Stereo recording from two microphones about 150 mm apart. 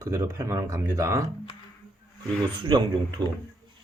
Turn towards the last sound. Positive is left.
turn(degrees=-30)  # may be behind; listen again after turning